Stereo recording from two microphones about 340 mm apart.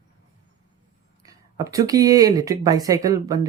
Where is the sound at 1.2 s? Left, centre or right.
Centre.